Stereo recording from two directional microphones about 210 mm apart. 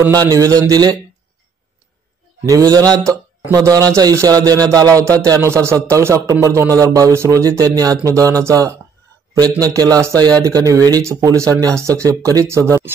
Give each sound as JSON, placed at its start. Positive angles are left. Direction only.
{"t": 0.0, "sound": "a man's voice", "side_deg": -15}
{"t": 2.4, "sound": "a man's voice", "side_deg": -15}